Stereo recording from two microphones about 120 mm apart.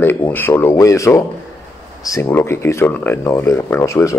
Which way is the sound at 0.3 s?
15° left (ahead or behind).